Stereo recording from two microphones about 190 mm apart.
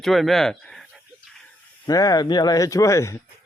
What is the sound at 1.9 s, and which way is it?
Speech, 20° left (ahead or behind).